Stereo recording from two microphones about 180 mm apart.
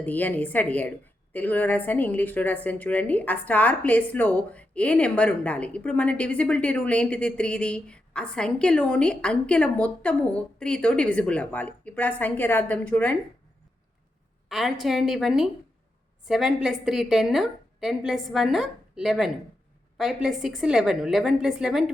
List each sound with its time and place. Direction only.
0.0 s a woman's voice: 10° left (ahead or behind)
14.5 s a woman's voice: centre (ahead or behind)